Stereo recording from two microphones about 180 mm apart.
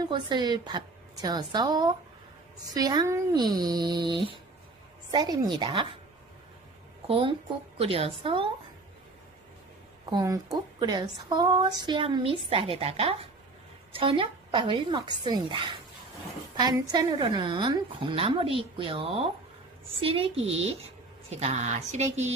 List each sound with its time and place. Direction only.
0.0 s a woman's voice: 25° right (ahead or behind)
7.1 s a woman's voice: 30° right (ahead or behind)
10.0 s a woman's voice: 20° right (ahead or behind); by 22.3 s 40° right (ahead or behind)